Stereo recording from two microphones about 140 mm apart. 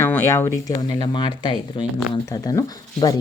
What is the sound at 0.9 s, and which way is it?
Speech, 30° left (ahead or behind).